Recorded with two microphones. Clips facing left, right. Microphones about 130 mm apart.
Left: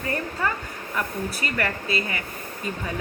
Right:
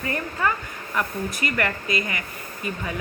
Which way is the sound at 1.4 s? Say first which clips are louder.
Right 3 dB; 30° left (ahead or behind).